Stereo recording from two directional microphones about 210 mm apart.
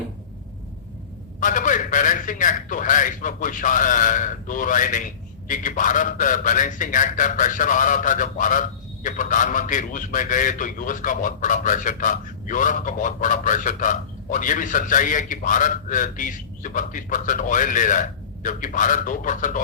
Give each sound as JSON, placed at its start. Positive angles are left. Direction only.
{"t": 1.4, "sound": "a man's voice", "side_deg": 40}